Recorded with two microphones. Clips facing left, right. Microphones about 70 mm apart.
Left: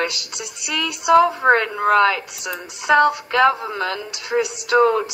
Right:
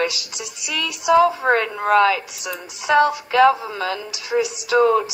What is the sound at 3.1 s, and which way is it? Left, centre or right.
A woman's voice, centre.